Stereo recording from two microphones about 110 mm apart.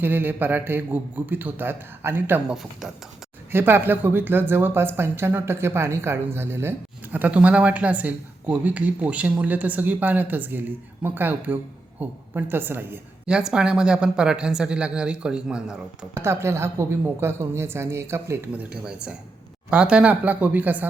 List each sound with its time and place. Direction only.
0.0 s a woman's voice: 15° right (ahead or behind)
2.5 s speech: 5° right (ahead or behind)
3.5 s a woman's voice: 20° right (ahead or behind)
13.2 s a woman's voice: 10° right (ahead or behind)
16.1 s a woman's voice: 25° right (ahead or behind)
18.7 s a woman's voice: 10° right (ahead or behind)